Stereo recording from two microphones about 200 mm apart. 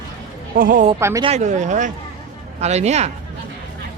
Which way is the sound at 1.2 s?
35° right (ahead or behind).